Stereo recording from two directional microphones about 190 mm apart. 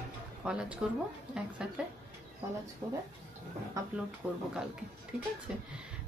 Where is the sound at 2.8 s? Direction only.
25° right (ahead or behind).